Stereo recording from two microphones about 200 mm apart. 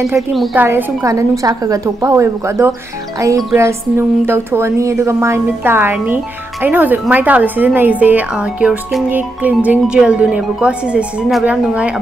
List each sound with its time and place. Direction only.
0.3 s a woman's voice: centre (ahead or behind)
0.7 s a woman's voice: 15° right (ahead or behind)